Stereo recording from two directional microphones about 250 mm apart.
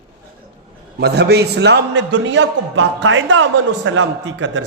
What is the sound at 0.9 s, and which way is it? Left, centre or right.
A man's voice, right.